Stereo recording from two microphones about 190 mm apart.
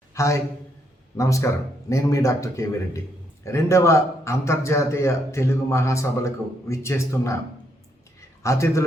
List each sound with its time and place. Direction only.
0.1 s a man's voice: 15° left (ahead or behind)
8.4 s a man's voice: 15° left (ahead or behind)